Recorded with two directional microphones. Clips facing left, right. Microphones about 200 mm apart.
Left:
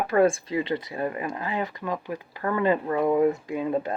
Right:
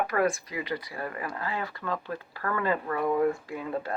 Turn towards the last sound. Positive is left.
turn(degrees=20)  # may be behind; listen again after turning